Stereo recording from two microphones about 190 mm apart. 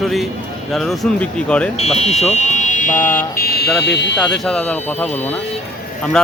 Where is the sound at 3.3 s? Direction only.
55° left (ahead or behind).